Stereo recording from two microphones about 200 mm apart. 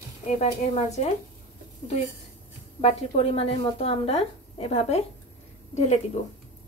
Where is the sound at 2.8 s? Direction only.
30° left (ahead or behind).